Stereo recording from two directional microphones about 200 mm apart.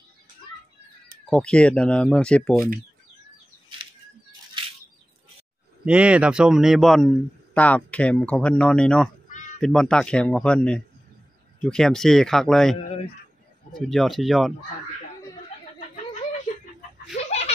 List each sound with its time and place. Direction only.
1.3 s speech: 5° left (ahead or behind)
5.9 s speech: 5° right (ahead or behind)
12.7 s speech: 30° left (ahead or behind)
13.7 s speech: centre (ahead or behind)
17.1 s snicker: 30° left (ahead or behind)